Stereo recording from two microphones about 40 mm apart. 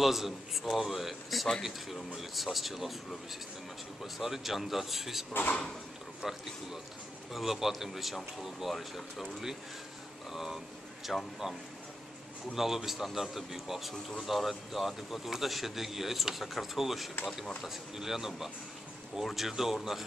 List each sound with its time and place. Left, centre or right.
0.0 s speech: centre
4.0 s speech: centre
5.3 s speech: left
6.2 s speech: centre
10.3 s speech: centre
12.5 s speech: centre